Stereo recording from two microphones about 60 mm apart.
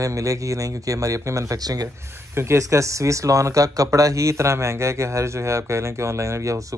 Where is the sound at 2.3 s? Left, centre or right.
Right.